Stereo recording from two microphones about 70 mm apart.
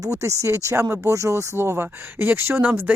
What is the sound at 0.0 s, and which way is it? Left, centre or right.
Speech, right.